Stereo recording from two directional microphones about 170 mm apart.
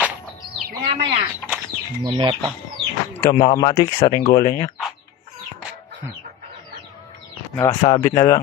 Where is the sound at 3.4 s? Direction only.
30° left (ahead or behind).